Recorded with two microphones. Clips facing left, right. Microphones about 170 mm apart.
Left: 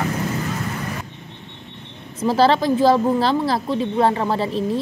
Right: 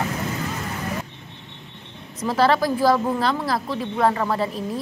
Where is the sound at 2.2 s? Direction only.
30° left (ahead or behind).